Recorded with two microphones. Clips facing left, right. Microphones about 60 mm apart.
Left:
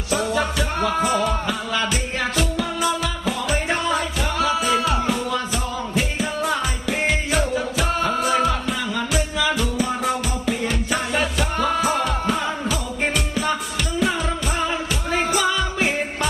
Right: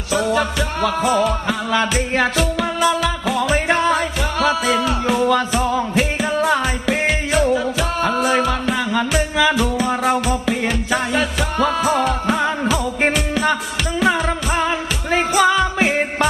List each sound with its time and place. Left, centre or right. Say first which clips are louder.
0.8 s music: right 4 dB; right
2.6 s music: right 5 dB; right
3.8 s music: right 5 dB; right
5.9 s music: right 5 dB; right
7.3 s music: right 5 dB; right
8.0 s music: right 5 dB; right
8.3 s music: even; right
8.6 s music: right 5 dB; right
10.9 s music: right 3 dB; right
13.0 s music: right 5 dB; right
14.0 s music: right 5 dB; right